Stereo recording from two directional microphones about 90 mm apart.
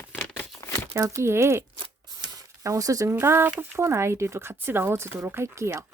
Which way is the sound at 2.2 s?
40° right (ahead or behind).